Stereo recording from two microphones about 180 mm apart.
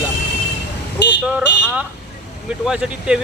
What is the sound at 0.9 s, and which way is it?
Vehicle, 75° left (ahead or behind).